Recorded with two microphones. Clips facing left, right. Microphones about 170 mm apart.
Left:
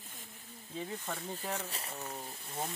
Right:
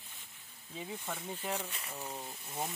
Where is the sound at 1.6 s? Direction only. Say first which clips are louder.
Left 3 dB; 35° left (ahead or behind).